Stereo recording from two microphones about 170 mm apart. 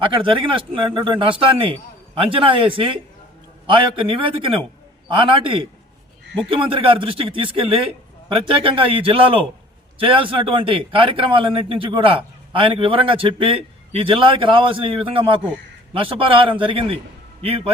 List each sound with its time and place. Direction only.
0.0 s a man's voice: 30° right (ahead or behind)